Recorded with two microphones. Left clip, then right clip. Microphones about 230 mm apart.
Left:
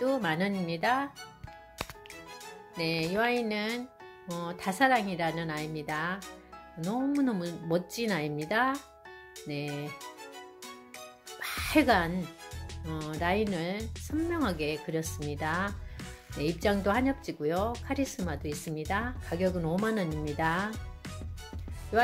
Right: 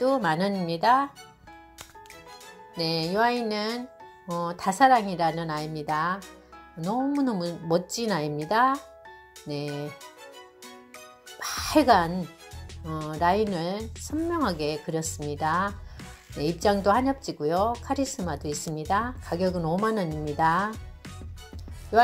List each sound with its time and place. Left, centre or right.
0.0 s speech: centre
2.7 s music: centre
4.3 s speech: centre
11.3 s music: centre
12.8 s speech: centre